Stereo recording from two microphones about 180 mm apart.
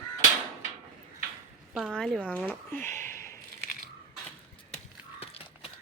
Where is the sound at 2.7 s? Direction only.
15° left (ahead or behind).